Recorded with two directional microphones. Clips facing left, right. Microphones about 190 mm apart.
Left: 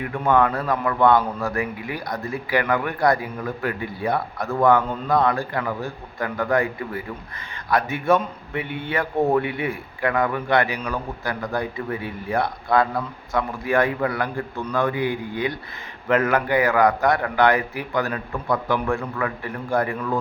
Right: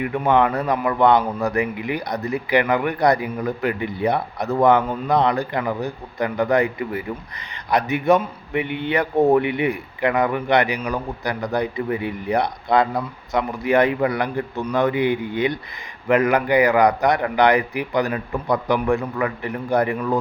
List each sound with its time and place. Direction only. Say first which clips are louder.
0.1 s a man's voice: even; 20° right (ahead or behind)